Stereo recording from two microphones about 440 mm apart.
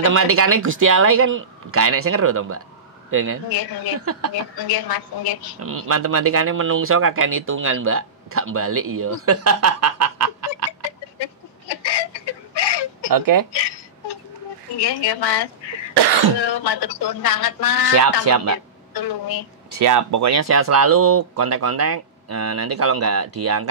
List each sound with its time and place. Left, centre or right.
0.0 s speech: right
3.4 s speech: left
4.0 s speech: right
4.6 s speech: left
5.9 s speech: right
11.1 s chicken: left
13.1 s speech: right
13.5 s a sound: left
14.8 s a woman's voice: left
17.9 s speech: right
18.9 s speech: left
19.8 s speech: right